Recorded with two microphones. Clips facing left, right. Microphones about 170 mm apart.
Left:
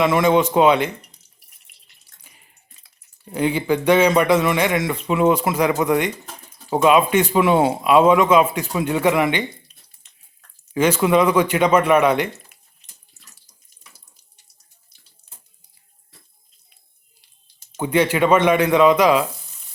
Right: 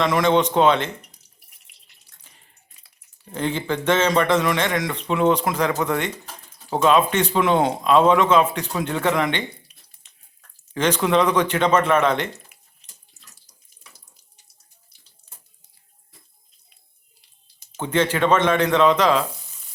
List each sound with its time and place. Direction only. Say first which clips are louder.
0.0 s a man's voice: left 2 dB; 5° left (ahead or behind)
2.2 s a sound: left 2 dB; 10° left (ahead or behind)
3.3 s a man's voice: left 5 dB; 10° left (ahead or behind)
10.8 s a man's voice: left 3 dB; 10° left (ahead or behind)
17.7 s a man's voice: left 3 dB; 10° left (ahead or behind)